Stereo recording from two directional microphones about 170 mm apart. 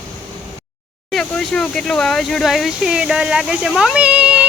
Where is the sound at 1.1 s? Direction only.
5° left (ahead or behind).